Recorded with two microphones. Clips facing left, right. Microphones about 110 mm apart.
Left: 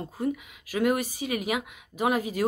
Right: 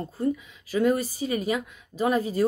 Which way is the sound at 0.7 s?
90° left.